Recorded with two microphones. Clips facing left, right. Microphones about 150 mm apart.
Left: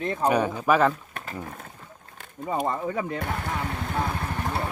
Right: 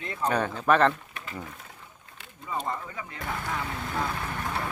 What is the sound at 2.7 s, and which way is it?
Speech, 50° left (ahead or behind).